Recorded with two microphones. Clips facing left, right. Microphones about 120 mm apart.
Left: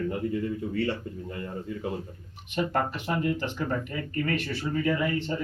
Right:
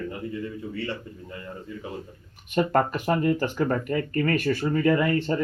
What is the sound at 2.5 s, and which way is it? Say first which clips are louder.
Speech: right 5 dB; 50° right (ahead or behind).